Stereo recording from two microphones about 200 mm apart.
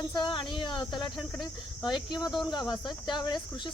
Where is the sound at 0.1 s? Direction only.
25° left (ahead or behind).